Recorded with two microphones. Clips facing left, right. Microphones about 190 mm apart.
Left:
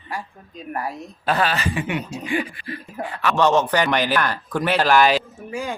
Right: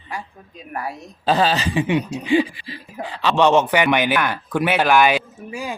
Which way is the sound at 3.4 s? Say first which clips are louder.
Right 2 dB; 10° right (ahead or behind).